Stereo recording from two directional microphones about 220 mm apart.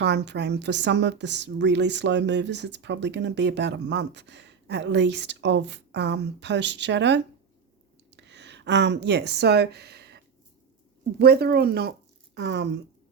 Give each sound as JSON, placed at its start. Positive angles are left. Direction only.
{"t": 0.0, "sound": "a woman's voice", "side_deg": -50}
{"t": 11.2, "sound": "speech", "side_deg": -45}